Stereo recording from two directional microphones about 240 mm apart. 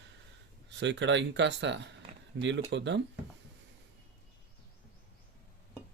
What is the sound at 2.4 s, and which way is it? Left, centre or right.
Speech, right.